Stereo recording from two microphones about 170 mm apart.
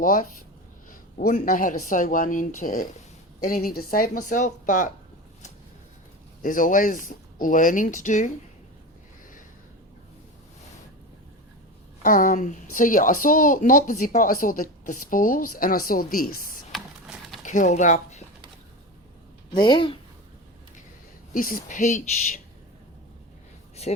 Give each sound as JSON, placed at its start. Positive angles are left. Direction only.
{"t": 0.0, "sound": "speech", "side_deg": 55}
{"t": 6.4, "sound": "speech", "side_deg": 50}
{"t": 12.0, "sound": "speech", "side_deg": 50}
{"t": 16.7, "sound": "a sound", "side_deg": 0}
{"t": 17.4, "sound": "speech", "side_deg": 45}
{"t": 19.5, "sound": "speech", "side_deg": 25}
{"t": 21.3, "sound": "speech", "side_deg": 55}